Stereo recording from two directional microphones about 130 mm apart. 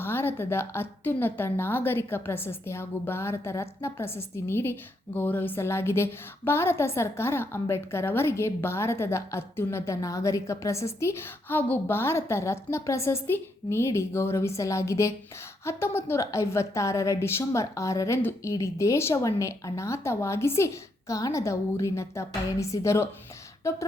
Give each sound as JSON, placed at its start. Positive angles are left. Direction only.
{"t": 0.0, "sound": "a woman's voice", "side_deg": 15}